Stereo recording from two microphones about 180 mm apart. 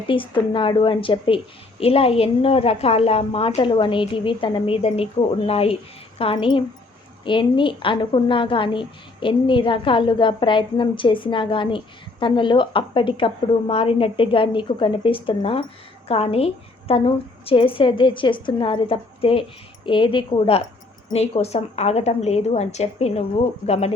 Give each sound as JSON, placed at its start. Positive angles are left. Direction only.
{"t": 0.1, "sound": "a woman's voice", "side_deg": 30}